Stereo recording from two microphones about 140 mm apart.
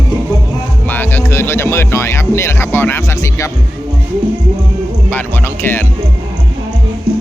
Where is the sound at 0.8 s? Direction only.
15° left (ahead or behind).